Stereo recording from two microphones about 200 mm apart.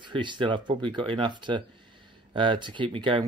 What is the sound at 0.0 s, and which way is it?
Speech, 25° right (ahead or behind).